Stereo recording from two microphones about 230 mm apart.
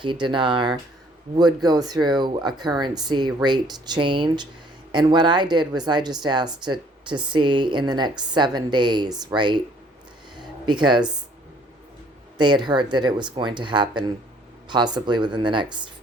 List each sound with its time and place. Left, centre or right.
0.0 s speech: right
10.3 s a sound: centre
12.4 s speech: centre